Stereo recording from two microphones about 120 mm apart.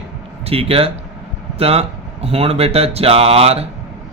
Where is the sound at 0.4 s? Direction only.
55° right (ahead or behind).